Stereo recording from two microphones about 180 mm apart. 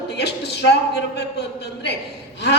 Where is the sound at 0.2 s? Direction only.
70° left (ahead or behind).